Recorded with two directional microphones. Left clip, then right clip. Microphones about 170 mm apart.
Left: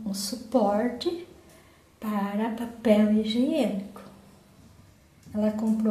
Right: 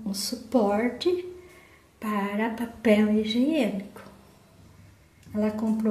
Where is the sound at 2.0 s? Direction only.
10° right (ahead or behind).